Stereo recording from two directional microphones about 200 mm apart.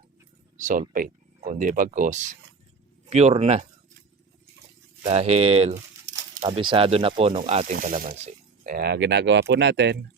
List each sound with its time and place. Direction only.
0.6 s speech: 40° right (ahead or behind)
5.0 s speech: 30° right (ahead or behind); by 10.0 s 60° right (ahead or behind)